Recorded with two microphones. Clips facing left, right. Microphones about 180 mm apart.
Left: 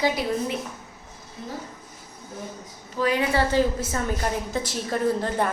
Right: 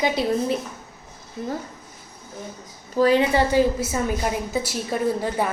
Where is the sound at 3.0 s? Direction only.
30° right (ahead or behind).